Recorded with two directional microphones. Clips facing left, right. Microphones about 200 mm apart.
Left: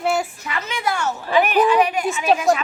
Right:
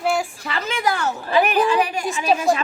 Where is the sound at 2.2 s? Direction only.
Centre (ahead or behind).